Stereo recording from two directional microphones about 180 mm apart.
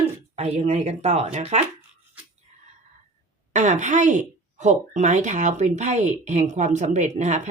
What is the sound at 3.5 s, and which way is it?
Speech, 40° right (ahead or behind).